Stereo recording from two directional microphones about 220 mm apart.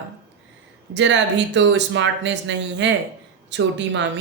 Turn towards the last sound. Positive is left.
turn(degrees=-55)  # may be behind; listen again after turning